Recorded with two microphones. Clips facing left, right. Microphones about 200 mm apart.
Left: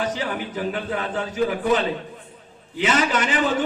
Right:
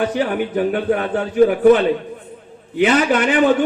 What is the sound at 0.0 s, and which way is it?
A man's voice, 60° right (ahead or behind).